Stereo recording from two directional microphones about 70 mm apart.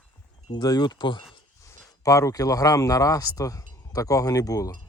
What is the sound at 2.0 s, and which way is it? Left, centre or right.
Speech, left.